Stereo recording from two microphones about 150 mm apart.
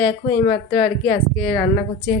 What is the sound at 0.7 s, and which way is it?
Speech, 70° left (ahead or behind).